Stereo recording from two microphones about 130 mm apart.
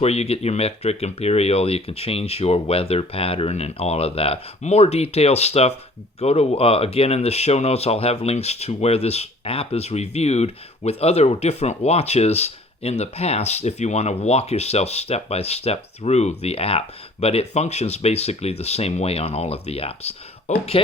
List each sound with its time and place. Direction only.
0.0 s speech: 55° left (ahead or behind)